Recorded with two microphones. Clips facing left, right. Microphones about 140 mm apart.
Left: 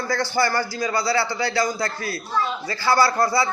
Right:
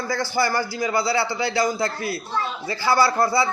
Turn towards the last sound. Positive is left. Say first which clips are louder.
# even
turn(degrees=-15)  # may be behind; listen again after turning